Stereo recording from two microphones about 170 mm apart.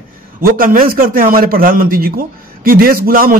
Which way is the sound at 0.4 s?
55° right (ahead or behind).